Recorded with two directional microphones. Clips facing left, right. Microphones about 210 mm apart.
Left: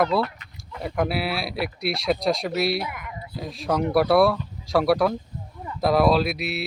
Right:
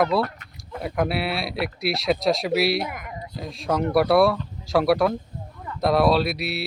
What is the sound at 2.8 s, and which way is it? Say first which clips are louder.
Speech: right 2 dB; 45° right (ahead or behind).